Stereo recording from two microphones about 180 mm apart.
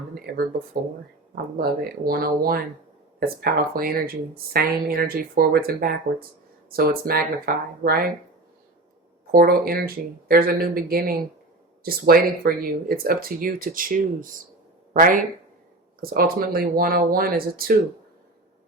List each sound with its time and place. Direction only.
0.3 s speech: 55° right (ahead or behind)
1.5 s speech: 55° right (ahead or behind)
9.3 s speech: 55° right (ahead or behind)